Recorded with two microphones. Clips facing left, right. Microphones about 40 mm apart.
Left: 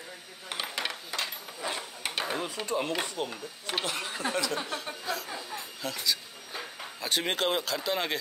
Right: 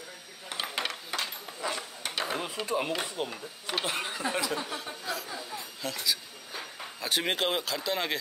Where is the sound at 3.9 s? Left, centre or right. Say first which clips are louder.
Right 2 dB; centre.